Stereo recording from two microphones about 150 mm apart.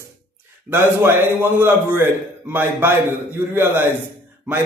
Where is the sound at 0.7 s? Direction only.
15° right (ahead or behind).